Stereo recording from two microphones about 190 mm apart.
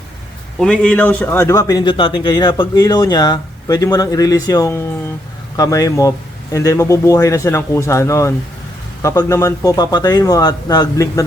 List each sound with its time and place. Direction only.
0.6 s a man's voice: 5° left (ahead or behind)